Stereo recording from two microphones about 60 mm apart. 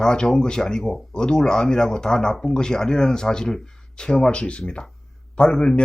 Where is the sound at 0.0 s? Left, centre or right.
Centre.